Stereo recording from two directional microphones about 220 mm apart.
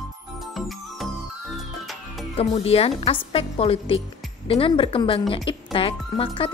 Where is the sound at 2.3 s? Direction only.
25° left (ahead or behind).